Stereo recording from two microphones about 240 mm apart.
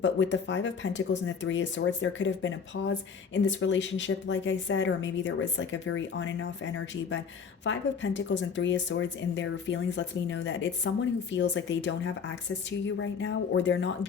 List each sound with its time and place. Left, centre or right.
0.0 s speech: left